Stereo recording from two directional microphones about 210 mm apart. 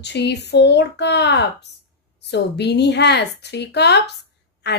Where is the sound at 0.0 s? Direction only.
55° left (ahead or behind).